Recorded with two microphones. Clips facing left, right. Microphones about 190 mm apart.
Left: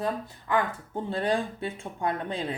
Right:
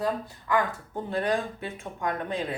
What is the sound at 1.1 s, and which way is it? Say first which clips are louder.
Speech: even; 30° left (ahead or behind).